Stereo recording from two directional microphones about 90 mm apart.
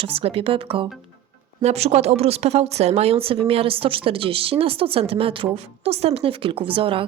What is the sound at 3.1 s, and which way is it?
A woman's voice, 90° right.